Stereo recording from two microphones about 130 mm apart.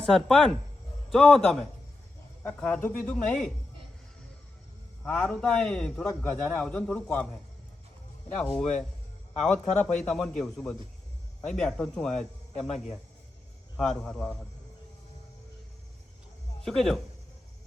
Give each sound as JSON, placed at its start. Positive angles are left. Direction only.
{"t": 0.0, "sound": "speech", "side_deg": 5}
{"t": 5.0, "sound": "speech", "side_deg": 5}
{"t": 8.4, "sound": "speech", "side_deg": 5}
{"t": 12.6, "sound": "a man's voice", "side_deg": 55}
{"t": 13.7, "sound": "speech", "side_deg": 5}
{"t": 16.6, "sound": "speech", "side_deg": 0}